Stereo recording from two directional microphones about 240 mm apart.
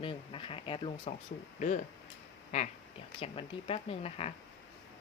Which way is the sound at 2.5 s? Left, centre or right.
Left.